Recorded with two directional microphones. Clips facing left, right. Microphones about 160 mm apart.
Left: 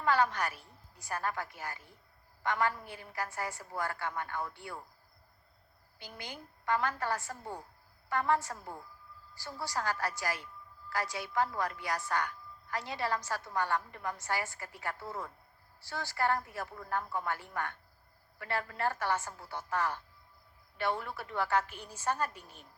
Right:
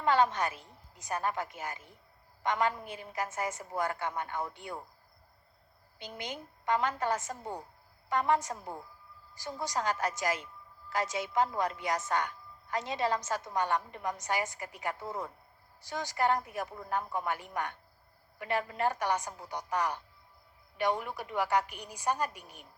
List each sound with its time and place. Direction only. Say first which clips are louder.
0.0 s a woman's voice: right 2 dB; 20° right (ahead or behind)
6.0 s a woman's voice: right 5 dB; 20° right (ahead or behind)